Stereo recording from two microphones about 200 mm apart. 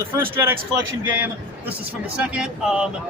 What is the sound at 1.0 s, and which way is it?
Speech, 10° right (ahead or behind).